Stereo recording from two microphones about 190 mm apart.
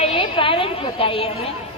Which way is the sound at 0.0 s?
30° left (ahead or behind).